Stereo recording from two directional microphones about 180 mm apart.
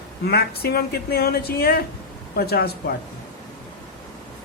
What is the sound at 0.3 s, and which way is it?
Speech, 60° left (ahead or behind).